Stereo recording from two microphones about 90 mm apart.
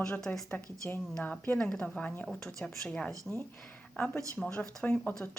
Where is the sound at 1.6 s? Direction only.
10° left (ahead or behind).